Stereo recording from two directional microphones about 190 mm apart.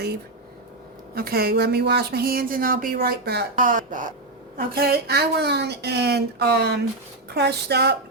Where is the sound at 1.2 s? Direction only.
55° right (ahead or behind).